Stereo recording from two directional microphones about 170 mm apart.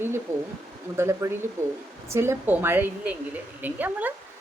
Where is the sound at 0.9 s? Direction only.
15° right (ahead or behind).